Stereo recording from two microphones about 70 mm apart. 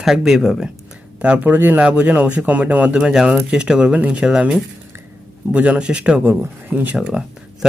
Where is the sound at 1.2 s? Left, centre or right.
Right.